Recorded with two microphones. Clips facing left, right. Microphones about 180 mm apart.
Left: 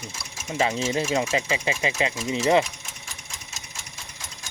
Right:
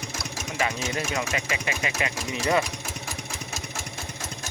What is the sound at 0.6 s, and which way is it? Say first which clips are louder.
Speech: left 5 dB; 25° left (ahead or behind).